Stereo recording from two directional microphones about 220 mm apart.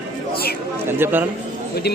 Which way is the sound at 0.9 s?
10° right (ahead or behind).